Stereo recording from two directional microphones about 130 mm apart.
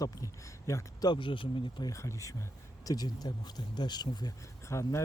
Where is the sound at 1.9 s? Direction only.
25° left (ahead or behind).